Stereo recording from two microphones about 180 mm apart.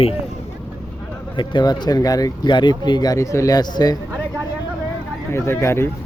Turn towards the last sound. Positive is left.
turn(degrees=15)  # may be behind; listen again after turning